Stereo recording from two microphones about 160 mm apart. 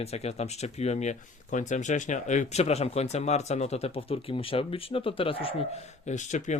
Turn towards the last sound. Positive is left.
turn(degrees=50)  # may be behind; listen again after turning